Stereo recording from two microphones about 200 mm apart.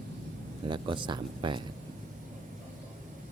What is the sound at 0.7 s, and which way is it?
Speech, 25° right (ahead or behind).